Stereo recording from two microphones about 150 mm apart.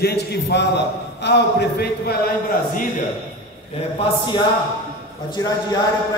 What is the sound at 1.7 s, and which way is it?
Speech, 90° left.